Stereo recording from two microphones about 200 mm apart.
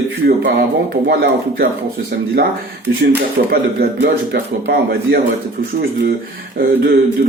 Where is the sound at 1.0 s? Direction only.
50° right (ahead or behind).